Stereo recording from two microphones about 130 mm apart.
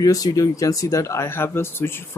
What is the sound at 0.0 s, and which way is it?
Speech, 30° left (ahead or behind).